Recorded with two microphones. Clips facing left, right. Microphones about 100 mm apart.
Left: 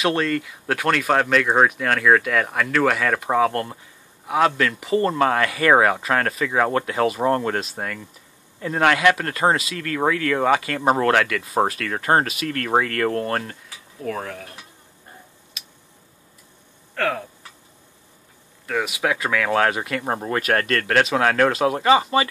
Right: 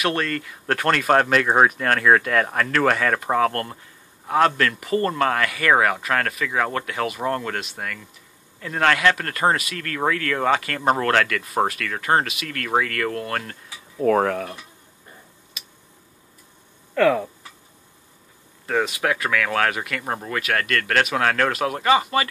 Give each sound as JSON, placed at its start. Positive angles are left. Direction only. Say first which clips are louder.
{"t": 0.0, "sound": "speech", "louder": "left 3 dB", "side_deg": 15}
{"t": 14.0, "sound": "speech", "louder": "right 10 dB", "side_deg": -60}
{"t": 18.9, "sound": "speech", "louder": "even", "side_deg": 15}
{"t": 20.3, "sound": "speech", "louder": "left 2 dB", "side_deg": 35}
{"t": 20.8, "sound": "speech", "louder": "left 1 dB", "side_deg": 20}